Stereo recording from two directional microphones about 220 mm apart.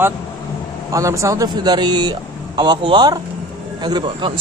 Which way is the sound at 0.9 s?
15° right (ahead or behind).